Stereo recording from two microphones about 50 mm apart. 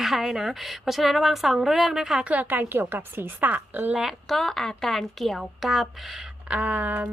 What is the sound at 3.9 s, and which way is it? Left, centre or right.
Speech, centre.